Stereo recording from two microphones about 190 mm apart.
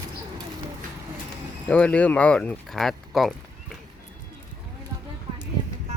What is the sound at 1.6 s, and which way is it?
Speech, 5° left (ahead or behind).